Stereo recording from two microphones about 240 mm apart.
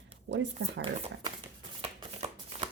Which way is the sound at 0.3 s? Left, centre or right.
Right.